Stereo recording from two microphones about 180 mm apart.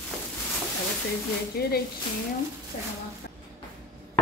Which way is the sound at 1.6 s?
60° left (ahead or behind).